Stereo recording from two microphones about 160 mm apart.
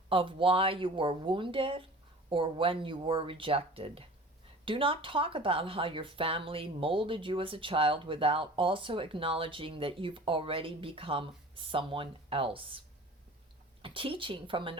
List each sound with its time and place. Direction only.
0.1 s speech: 35° right (ahead or behind)
13.8 s speech: 35° right (ahead or behind)